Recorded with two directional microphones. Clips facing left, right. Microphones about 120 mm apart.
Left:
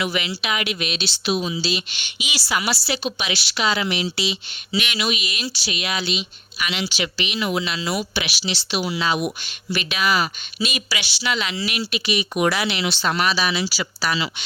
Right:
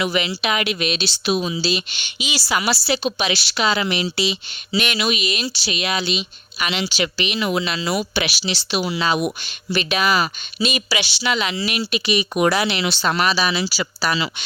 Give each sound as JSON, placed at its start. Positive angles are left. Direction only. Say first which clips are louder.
{"t": 0.0, "sound": "a woman's voice", "louder": "right 3 dB", "side_deg": -30}
{"t": 1.2, "sound": "a woman's voice", "louder": "right 1 dB", "side_deg": -50}
{"t": 3.8, "sound": "speech", "louder": "right 2 dB", "side_deg": -50}
{"t": 4.7, "sound": "a woman's voice", "louder": "right 3 dB", "side_deg": -40}
{"t": 9.4, "sound": "a woman's voice", "louder": "right 3 dB", "side_deg": -30}